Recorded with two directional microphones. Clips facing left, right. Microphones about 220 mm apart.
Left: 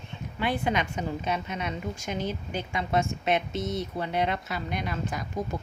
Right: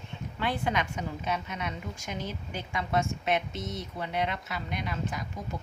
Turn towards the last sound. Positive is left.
turn(degrees=40)  # may be behind; listen again after turning